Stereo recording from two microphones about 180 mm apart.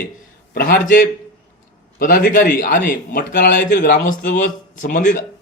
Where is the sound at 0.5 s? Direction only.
55° left (ahead or behind).